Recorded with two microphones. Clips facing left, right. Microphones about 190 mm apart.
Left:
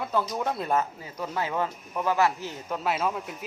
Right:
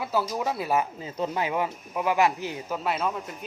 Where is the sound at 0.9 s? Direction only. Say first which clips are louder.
Right 3 dB; 20° right (ahead or behind).